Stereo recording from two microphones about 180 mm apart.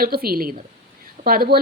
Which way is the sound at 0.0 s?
55° right (ahead or behind).